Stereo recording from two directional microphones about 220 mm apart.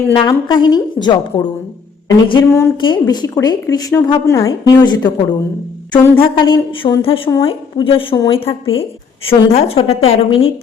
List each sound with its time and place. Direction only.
0.1 s a woman's voice: 20° left (ahead or behind)
2.4 s a woman's voice: 10° left (ahead or behind)